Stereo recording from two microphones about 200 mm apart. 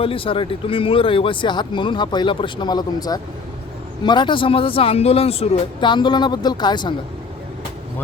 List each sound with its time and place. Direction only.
0.0 s speech: 25° left (ahead or behind)